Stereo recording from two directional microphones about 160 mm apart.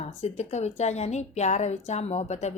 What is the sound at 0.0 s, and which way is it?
Speech, 45° left (ahead or behind).